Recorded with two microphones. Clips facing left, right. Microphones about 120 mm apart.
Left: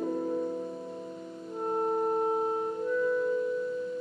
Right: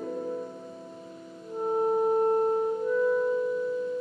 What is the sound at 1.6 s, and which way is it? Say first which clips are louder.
Music: right 4 dB; 5° right (ahead or behind).